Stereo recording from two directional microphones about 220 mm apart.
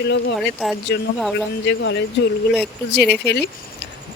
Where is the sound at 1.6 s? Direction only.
55° left (ahead or behind).